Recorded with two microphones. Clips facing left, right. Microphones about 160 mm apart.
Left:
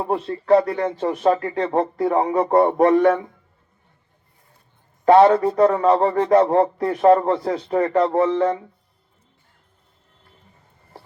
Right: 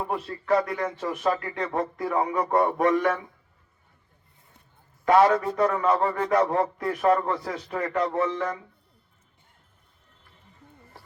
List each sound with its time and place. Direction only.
0.0 s a man's voice: 30° left (ahead or behind)
5.0 s a man's voice: 30° left (ahead or behind)